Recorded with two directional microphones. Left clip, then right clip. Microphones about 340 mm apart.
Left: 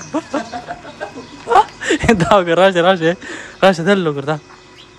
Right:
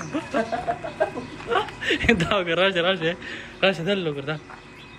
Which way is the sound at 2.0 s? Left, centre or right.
Centre.